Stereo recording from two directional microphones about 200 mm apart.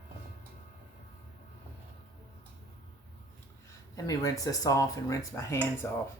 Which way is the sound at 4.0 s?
15° left (ahead or behind).